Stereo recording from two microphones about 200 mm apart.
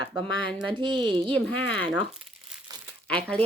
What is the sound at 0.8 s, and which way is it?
Speech, 25° right (ahead or behind).